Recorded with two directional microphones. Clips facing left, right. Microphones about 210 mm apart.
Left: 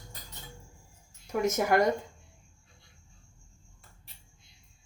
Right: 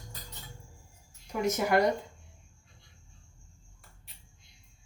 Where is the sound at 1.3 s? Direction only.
45° left (ahead or behind).